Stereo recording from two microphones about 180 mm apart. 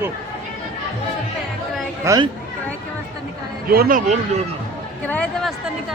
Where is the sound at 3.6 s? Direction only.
55° right (ahead or behind).